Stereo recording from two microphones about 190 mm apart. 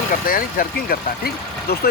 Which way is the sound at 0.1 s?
45° left (ahead or behind).